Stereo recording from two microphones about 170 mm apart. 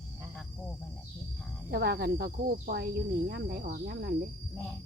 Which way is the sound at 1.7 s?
65° right (ahead or behind).